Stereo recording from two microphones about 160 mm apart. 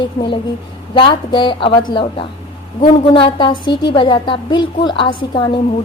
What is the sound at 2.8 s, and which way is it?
Speech, 45° left (ahead or behind).